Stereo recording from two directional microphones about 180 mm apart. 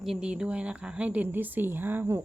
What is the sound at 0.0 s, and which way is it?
Speech, 5° right (ahead or behind).